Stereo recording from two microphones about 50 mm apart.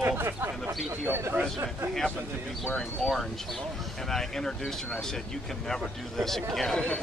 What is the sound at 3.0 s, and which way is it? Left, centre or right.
Speech, centre.